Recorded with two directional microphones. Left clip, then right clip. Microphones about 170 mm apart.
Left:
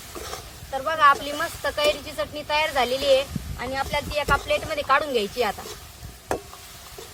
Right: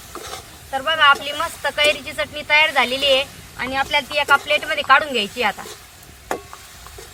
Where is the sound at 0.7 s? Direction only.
75° left (ahead or behind).